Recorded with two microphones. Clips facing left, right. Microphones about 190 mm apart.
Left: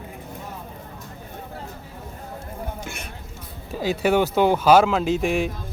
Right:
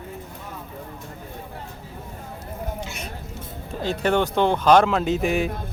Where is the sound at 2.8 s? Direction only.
50° left (ahead or behind).